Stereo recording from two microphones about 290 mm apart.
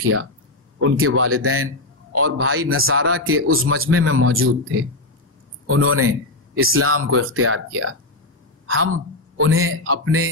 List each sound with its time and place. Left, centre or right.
0.0 s a man's voice: right